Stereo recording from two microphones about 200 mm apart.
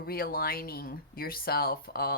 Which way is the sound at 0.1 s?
50° left (ahead or behind).